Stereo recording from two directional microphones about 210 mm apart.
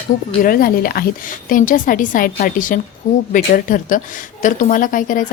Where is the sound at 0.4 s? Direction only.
45° left (ahead or behind).